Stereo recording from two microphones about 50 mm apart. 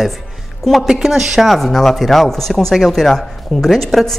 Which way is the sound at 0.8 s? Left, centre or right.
Centre.